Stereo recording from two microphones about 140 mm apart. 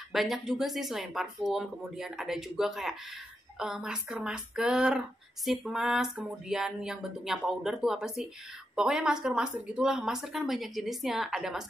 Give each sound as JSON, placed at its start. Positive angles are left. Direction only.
{"t": 0.1, "sound": "speech", "side_deg": 0}